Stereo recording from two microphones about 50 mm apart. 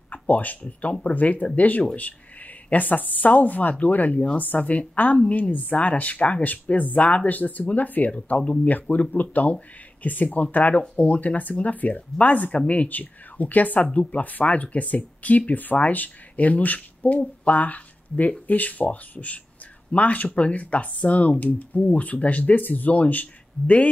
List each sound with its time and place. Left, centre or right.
0.1 s speech: left